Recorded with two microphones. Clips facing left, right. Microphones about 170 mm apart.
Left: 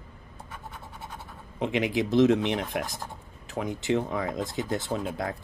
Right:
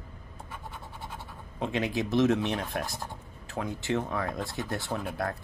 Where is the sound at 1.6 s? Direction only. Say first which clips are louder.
Left 3 dB; 20° left (ahead or behind).